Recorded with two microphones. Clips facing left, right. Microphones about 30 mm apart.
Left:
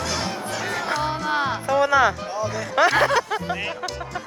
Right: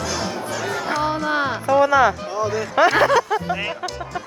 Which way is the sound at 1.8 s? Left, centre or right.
Left.